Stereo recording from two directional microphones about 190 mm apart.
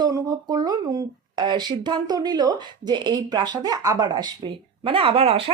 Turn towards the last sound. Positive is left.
turn(degrees=-30)  # may be behind; listen again after turning